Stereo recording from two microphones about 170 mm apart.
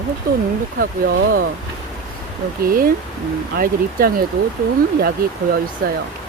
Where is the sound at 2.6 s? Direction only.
55° right (ahead or behind).